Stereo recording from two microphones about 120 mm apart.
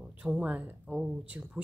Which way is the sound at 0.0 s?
10° right (ahead or behind).